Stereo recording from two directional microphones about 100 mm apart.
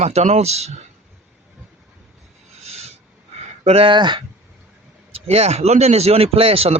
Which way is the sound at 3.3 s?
90° right.